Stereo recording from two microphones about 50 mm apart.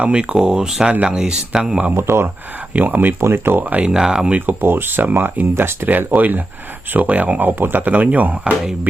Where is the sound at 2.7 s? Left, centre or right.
Right.